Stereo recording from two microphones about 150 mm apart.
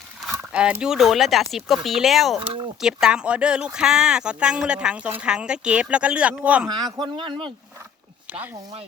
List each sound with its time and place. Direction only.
0.2 s speech: 5° right (ahead or behind)
2.4 s speech: 35° right (ahead or behind)
2.8 s speech: 5° right (ahead or behind)
6.7 s a man's voice: 25° right (ahead or behind)